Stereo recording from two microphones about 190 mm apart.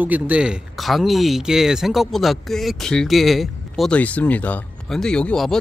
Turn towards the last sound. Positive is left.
turn(degrees=5)  # may be behind; listen again after turning